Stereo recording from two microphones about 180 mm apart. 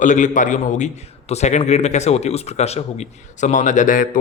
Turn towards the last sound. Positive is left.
turn(degrees=50)  # may be behind; listen again after turning